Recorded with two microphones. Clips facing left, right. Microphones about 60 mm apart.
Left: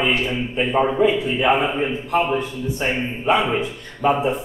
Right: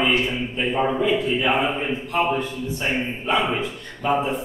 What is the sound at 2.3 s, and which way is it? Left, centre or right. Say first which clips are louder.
A man's voice: left 2 dB; centre.